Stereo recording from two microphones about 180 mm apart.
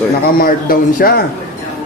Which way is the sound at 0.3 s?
55° left (ahead or behind).